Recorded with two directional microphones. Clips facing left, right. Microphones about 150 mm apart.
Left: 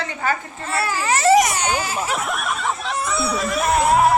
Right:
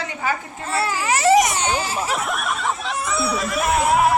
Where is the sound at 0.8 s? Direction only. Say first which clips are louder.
Even; 15° right (ahead or behind).